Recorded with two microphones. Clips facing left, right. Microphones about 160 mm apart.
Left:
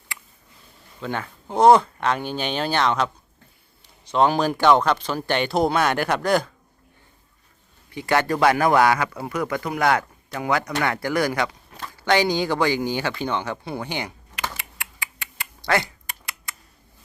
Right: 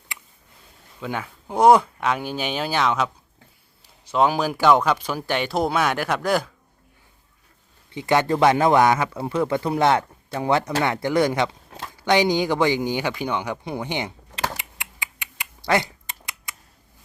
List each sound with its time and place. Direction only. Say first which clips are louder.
0.9 s speech: even; 5° right (ahead or behind)
7.9 s a man's voice: right 2 dB; 20° right (ahead or behind)